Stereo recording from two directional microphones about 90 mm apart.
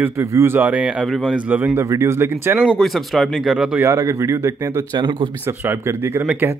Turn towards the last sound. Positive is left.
turn(degrees=-15)  # may be behind; listen again after turning